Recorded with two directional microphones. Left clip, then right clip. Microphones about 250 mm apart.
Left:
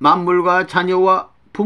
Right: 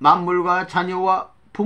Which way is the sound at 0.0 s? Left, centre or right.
Left.